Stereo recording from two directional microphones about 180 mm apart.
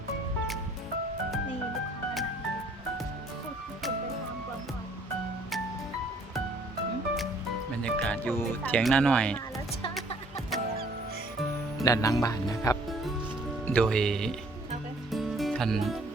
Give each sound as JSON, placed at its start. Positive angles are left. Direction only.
{"t": 7.7, "sound": "music", "side_deg": 5}
{"t": 8.8, "sound": "speech", "side_deg": 5}
{"t": 11.8, "sound": "speech", "side_deg": 20}
{"t": 13.7, "sound": "speech", "side_deg": 5}
{"t": 15.1, "sound": "music", "side_deg": 0}